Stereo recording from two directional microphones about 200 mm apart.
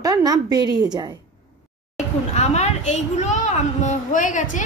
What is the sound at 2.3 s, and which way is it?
A woman's voice, 35° left (ahead or behind).